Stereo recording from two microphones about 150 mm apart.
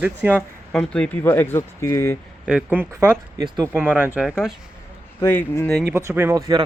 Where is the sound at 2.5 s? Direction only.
10° right (ahead or behind).